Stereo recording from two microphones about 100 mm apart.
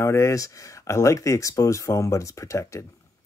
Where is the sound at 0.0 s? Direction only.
30° left (ahead or behind).